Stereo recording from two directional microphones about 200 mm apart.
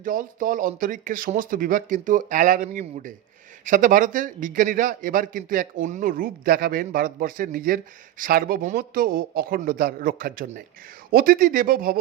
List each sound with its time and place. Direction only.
0.0 s speech: 40° right (ahead or behind)